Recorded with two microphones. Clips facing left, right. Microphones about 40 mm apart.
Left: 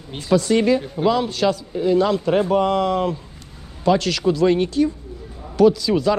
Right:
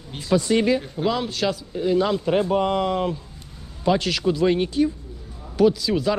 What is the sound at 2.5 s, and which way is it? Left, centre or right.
Speech, left.